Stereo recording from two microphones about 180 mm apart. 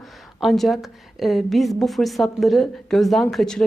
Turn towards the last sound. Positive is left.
turn(degrees=0)  # may be behind; listen again after turning